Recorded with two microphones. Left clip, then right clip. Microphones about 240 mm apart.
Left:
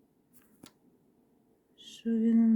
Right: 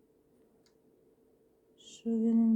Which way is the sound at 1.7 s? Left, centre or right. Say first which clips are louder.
Left 2 dB; centre.